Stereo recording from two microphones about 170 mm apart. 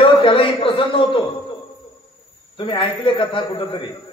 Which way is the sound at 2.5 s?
30° left (ahead or behind).